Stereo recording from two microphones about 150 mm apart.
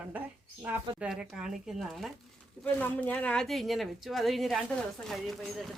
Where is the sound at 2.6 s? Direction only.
10° left (ahead or behind).